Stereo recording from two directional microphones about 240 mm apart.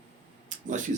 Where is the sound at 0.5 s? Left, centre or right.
Right.